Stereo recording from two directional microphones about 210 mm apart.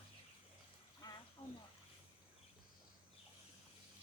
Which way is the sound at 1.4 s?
15° left (ahead or behind).